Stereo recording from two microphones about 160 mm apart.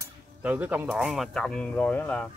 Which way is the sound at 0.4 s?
10° right (ahead or behind).